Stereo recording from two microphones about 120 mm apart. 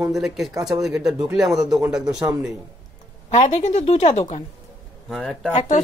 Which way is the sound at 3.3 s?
80° left.